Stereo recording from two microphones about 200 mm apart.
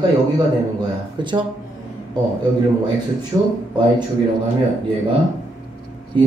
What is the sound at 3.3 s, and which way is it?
Speech, 20° right (ahead or behind).